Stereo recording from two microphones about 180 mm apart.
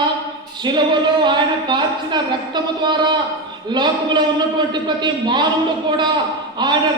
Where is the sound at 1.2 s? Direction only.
25° right (ahead or behind).